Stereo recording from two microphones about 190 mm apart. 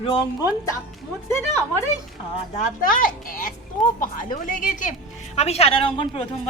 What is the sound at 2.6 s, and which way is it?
A woman's voice, 45° left (ahead or behind).